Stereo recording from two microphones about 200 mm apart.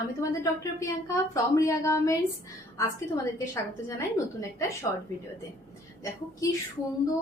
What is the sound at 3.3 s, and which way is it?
A woman's voice, 15° left (ahead or behind).